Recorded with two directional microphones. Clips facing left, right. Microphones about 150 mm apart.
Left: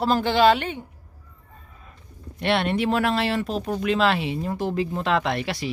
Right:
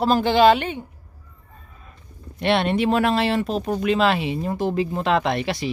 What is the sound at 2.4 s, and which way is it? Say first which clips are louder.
Speech: right 3 dB; 20° right (ahead or behind).